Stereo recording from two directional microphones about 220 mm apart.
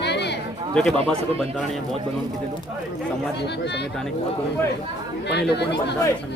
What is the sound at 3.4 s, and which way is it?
Speech, 50° left (ahead or behind).